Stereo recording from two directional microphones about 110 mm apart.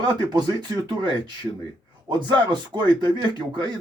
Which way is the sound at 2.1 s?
40° right (ahead or behind).